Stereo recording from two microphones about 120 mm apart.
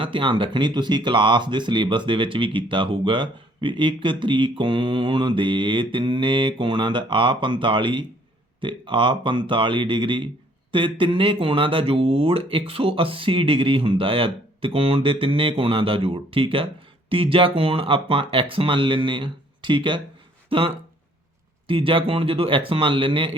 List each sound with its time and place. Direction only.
0.0 s speech: 45° right (ahead or behind)